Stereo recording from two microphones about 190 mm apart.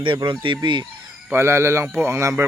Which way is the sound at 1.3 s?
15° right (ahead or behind).